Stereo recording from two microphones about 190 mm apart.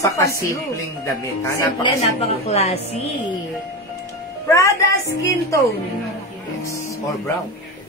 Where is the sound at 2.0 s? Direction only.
30° left (ahead or behind).